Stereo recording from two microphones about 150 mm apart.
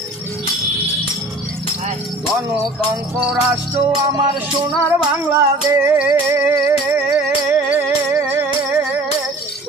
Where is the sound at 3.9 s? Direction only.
25° right (ahead or behind).